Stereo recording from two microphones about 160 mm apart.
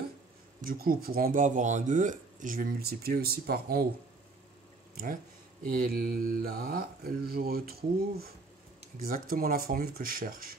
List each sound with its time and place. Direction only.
0.6 s speech: 65° right (ahead or behind)
5.0 s speech: 60° right (ahead or behind)